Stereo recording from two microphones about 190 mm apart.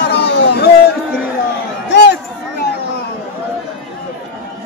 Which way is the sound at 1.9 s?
65° left (ahead or behind).